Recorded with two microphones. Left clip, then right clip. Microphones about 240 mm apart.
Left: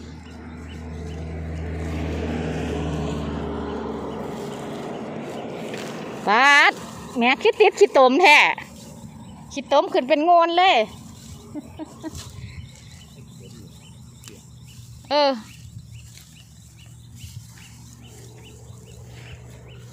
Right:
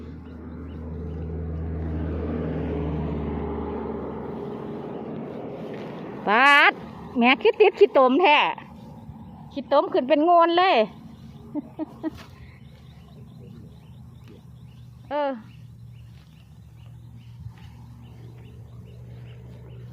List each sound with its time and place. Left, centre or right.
2.1 s vehicle: left; by 4.1 s centre
6.2 s a sound: centre
7.2 s speech: centre
10.2 s speech: centre
11.5 s a sound: centre
15.0 s speech: centre